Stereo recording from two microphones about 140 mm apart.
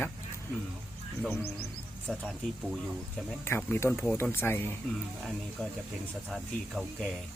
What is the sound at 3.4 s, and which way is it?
Speech, 15° left (ahead or behind).